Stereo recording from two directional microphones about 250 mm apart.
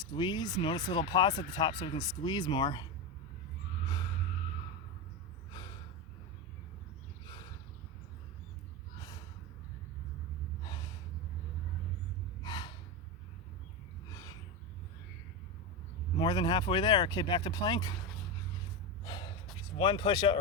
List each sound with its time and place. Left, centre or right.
0.0 s speech: centre
5.5 s gasp: centre
9.0 s gasp: centre
10.6 s gasp: centre
12.4 s gasp: centre
14.1 s a sound: centre
16.1 s speech: centre
19.0 s gasp: centre
19.7 s speech: centre